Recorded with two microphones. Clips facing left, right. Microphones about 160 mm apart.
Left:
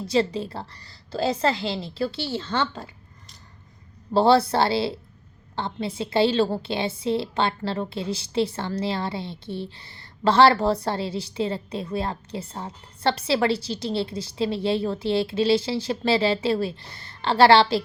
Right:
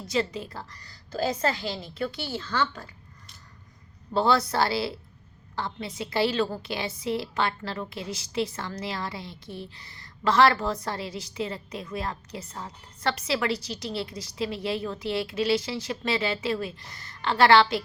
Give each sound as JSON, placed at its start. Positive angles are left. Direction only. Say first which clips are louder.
{"t": 0.0, "sound": "a woman's voice", "louder": "left 5 dB", "side_deg": 30}
{"t": 4.1, "sound": "a woman's voice", "louder": "left 6 dB", "side_deg": 30}